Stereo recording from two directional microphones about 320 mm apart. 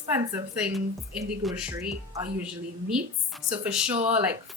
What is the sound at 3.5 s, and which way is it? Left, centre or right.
Speech, centre.